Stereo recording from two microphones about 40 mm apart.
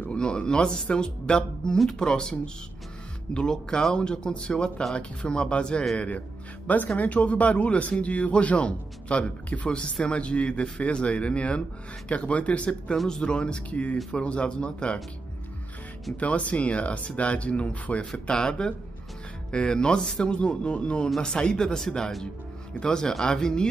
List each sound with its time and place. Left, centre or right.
0.1 s speech: left
5.9 s speech: left
9.7 s speech: left
12.9 s speech: centre
13.2 s speech: left
13.7 s speech: left
16.2 s speech: left
18.2 s speech: left